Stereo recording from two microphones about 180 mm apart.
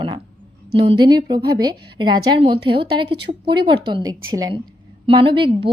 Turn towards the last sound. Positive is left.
turn(degrees=-30)  # may be behind; listen again after turning